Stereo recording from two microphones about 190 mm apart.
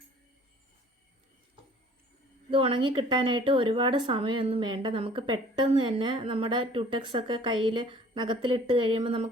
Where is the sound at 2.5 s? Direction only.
30° right (ahead or behind).